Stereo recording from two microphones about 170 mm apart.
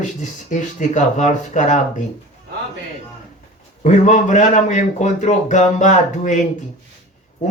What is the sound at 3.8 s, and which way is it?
Speech, 45° left (ahead or behind).